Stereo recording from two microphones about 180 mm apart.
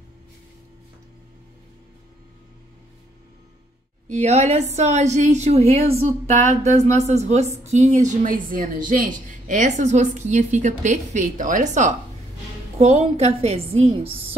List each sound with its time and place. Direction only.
4.1 s a woman's voice: 40° right (ahead or behind)